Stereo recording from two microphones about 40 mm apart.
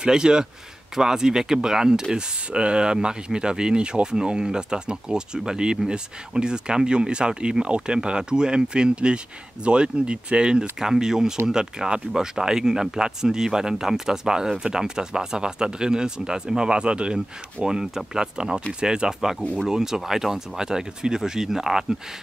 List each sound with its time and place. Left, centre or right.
0.0 s speech: centre
2.5 s speech: right
17.6 s speech: centre